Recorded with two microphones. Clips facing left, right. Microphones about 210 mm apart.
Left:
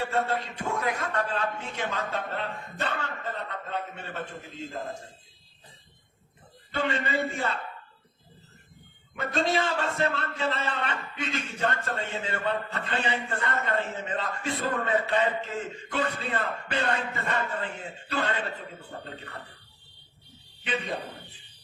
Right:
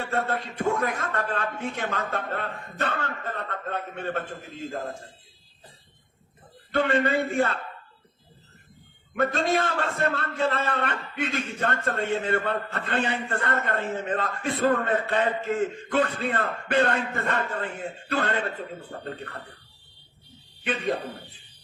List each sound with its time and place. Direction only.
0.0 s a man's voice: 50° right (ahead or behind)
6.7 s a man's voice: 55° right (ahead or behind)
9.1 s a man's voice: 55° right (ahead or behind)